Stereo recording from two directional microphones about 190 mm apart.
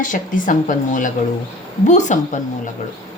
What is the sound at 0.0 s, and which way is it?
A woman's voice, 45° left (ahead or behind).